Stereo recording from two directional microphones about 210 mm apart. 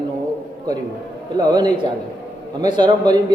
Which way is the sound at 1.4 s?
20° right (ahead or behind).